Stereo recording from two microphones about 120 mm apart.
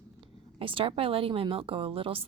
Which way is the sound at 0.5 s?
45° right (ahead or behind).